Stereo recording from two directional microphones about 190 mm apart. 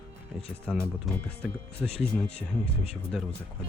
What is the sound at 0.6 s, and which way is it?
Speech, 5° left (ahead or behind).